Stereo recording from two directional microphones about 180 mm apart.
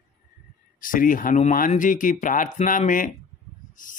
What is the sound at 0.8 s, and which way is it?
Speech, 50° left (ahead or behind).